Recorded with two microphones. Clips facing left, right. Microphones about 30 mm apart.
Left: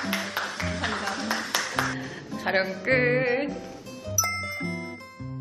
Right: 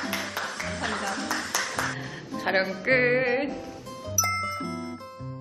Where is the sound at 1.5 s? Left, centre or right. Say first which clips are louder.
Left 1 dB; left.